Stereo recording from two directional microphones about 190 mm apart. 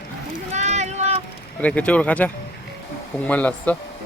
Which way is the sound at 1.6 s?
5° left (ahead or behind).